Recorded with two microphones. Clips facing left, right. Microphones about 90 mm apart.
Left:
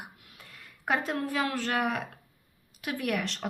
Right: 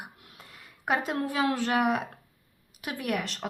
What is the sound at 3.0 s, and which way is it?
Speech, 5° right (ahead or behind).